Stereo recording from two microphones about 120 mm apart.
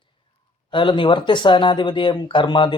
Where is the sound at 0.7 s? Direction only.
45° left (ahead or behind).